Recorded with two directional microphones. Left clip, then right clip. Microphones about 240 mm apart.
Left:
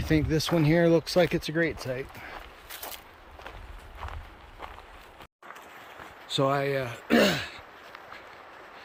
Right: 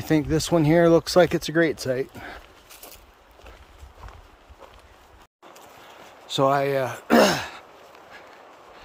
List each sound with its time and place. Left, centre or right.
0.0 s speech: centre
6.3 s speech: centre